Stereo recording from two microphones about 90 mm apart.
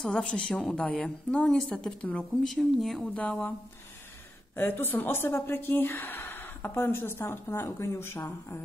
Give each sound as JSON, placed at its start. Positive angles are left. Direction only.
{"t": 0.0, "sound": "a woman's voice", "side_deg": 10}
{"t": 3.2, "sound": "a woman's voice", "side_deg": 15}
{"t": 4.6, "sound": "speech", "side_deg": 25}